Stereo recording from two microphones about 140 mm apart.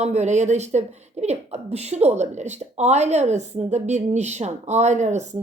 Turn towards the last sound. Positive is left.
turn(degrees=-55)  # may be behind; listen again after turning